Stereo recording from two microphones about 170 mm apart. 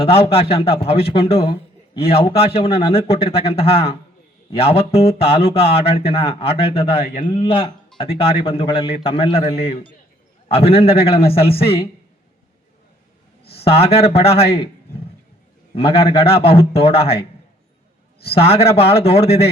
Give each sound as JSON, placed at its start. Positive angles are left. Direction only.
{"t": 0.0, "sound": "a man's voice", "side_deg": 35}
{"t": 7.0, "sound": "a man's voice", "side_deg": 55}
{"t": 7.3, "sound": "a man's voice", "side_deg": 30}
{"t": 13.6, "sound": "a man's voice", "side_deg": 35}
{"t": 18.3, "sound": "a man's voice", "side_deg": 35}